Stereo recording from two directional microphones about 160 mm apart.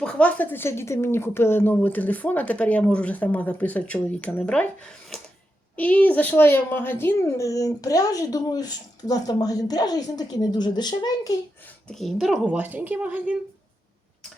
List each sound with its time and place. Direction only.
0.0 s speech: 5° left (ahead or behind)
5.7 s speech: 10° left (ahead or behind); by 11.3 s 25° left (ahead or behind)
11.9 s speech: centre (ahead or behind)